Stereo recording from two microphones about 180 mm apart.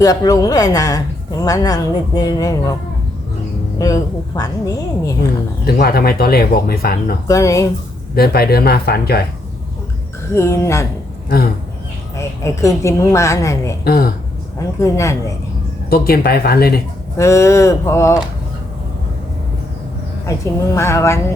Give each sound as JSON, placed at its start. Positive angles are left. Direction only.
{"t": 0.0, "sound": "speech", "side_deg": 20}
{"t": 3.8, "sound": "speech", "side_deg": 20}
{"t": 5.7, "sound": "speech", "side_deg": 55}
{"t": 7.3, "sound": "a woman's voice", "side_deg": 15}
{"t": 8.1, "sound": "speech", "side_deg": 60}
{"t": 10.3, "sound": "a woman's voice", "side_deg": 15}
{"t": 12.1, "sound": "a woman's voice", "side_deg": 15}
{"t": 13.8, "sound": "speech", "side_deg": 55}
{"t": 14.8, "sound": "a woman's voice", "side_deg": 15}
{"t": 15.9, "sound": "speech", "side_deg": 55}
{"t": 17.2, "sound": "a woman's voice", "side_deg": 15}
{"t": 20.2, "sound": "a woman's voice", "side_deg": 15}